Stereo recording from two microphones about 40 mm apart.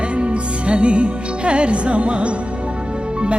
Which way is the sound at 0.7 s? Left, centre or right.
Right.